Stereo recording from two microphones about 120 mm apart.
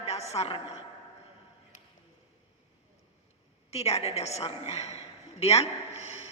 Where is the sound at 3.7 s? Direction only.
60° left (ahead or behind).